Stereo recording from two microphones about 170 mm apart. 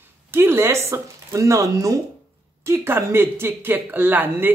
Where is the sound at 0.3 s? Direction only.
15° right (ahead or behind).